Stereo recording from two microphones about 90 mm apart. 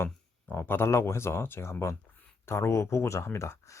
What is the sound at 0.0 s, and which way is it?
Speech, 25° left (ahead or behind).